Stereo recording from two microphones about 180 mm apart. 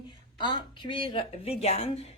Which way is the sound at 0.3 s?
25° left (ahead or behind).